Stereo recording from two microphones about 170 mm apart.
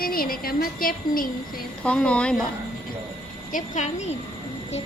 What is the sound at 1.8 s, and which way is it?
Speech, 5° left (ahead or behind).